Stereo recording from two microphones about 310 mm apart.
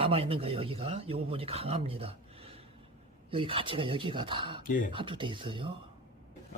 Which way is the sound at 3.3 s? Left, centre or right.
Centre.